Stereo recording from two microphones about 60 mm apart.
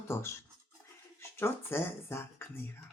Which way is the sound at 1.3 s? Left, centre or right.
Left.